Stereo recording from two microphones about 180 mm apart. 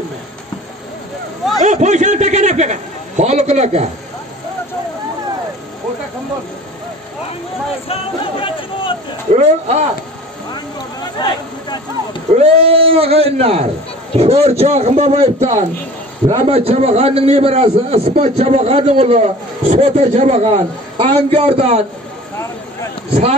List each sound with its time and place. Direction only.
1.6 s a man's voice: 40° right (ahead or behind)
7.9 s chatter: 30° left (ahead or behind)
9.3 s a man's voice: 40° right (ahead or behind)
12.4 s a man's voice: 35° right (ahead or behind)